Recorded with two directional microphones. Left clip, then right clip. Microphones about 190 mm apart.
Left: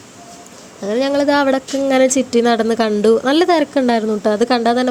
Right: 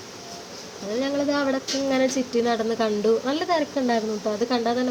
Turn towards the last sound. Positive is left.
turn(degrees=40)  # may be behind; listen again after turning